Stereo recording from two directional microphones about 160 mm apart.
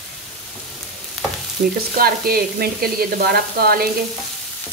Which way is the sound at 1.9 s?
70° right (ahead or behind).